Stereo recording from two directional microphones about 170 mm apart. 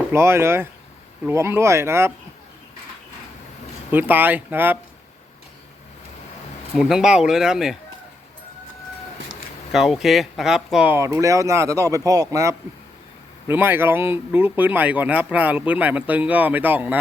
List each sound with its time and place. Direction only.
0.1 s speech: 15° right (ahead or behind)
3.9 s speech: 10° right (ahead or behind)
6.7 s speech: 5° right (ahead or behind)
9.7 s speech: centre (ahead or behind)